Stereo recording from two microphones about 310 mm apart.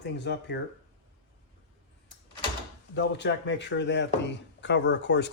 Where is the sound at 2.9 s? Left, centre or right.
Left.